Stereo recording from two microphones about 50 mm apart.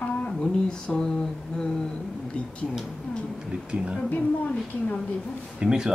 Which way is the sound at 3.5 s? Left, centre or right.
Right.